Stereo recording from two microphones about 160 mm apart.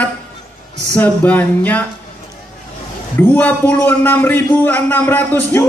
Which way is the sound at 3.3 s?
10° left (ahead or behind).